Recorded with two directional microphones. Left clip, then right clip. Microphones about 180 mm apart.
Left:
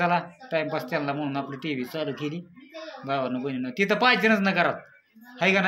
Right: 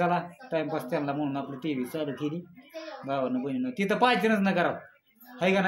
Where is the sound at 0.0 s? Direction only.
20° left (ahead or behind).